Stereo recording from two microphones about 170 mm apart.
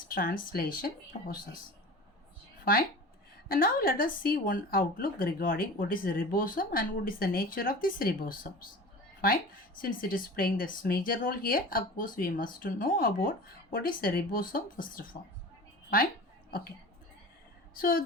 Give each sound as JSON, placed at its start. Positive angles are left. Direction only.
{"t": 0.1, "sound": "speech", "side_deg": 55}
{"t": 3.5, "sound": "speech", "side_deg": 55}
{"t": 16.5, "sound": "speech", "side_deg": 60}
{"t": 17.7, "sound": "speech", "side_deg": 55}